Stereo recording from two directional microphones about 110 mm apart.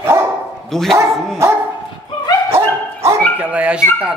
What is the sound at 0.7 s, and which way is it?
Speech, centre (ahead or behind).